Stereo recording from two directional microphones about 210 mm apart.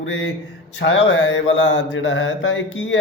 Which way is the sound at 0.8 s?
60° left (ahead or behind).